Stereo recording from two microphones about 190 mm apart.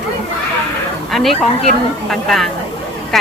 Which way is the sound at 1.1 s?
Centre (ahead or behind).